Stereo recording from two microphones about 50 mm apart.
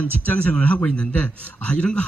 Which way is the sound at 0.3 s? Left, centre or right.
Left.